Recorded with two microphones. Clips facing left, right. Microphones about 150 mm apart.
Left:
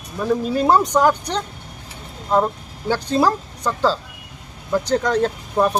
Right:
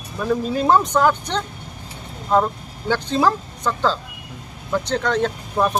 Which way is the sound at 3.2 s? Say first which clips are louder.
Left 1 dB; 10° left (ahead or behind).